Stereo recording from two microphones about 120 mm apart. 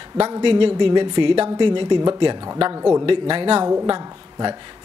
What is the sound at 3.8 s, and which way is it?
Speech, 35° right (ahead or behind).